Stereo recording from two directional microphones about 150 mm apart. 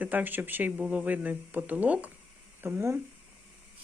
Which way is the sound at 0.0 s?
10° right (ahead or behind).